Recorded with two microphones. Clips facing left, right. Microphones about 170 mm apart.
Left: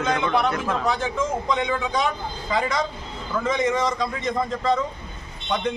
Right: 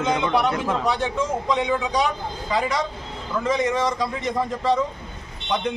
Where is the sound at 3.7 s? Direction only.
10° right (ahead or behind).